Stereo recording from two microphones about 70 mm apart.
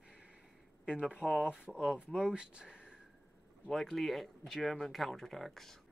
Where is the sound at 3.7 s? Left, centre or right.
Centre.